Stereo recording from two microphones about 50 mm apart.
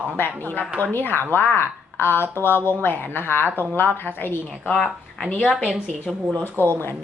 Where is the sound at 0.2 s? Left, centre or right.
Left.